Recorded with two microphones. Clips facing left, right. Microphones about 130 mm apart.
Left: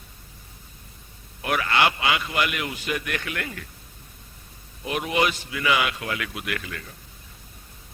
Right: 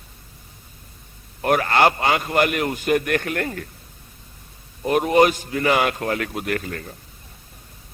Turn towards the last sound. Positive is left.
turn(degrees=-40)  # may be behind; listen again after turning